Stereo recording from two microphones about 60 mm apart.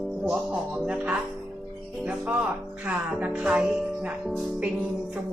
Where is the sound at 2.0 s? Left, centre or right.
Right.